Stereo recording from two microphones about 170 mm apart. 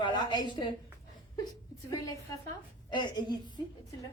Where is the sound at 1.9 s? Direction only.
20° left (ahead or behind).